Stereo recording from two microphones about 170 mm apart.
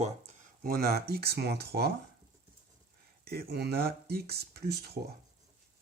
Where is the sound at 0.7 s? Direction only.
60° right (ahead or behind).